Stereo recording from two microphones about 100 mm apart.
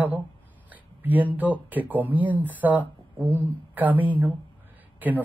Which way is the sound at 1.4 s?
15° right (ahead or behind).